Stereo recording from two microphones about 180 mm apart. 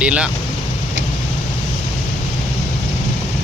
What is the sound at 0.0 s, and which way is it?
Speech, 5° right (ahead or behind).